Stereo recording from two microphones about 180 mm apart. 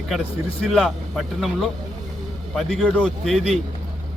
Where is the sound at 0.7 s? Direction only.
Centre (ahead or behind).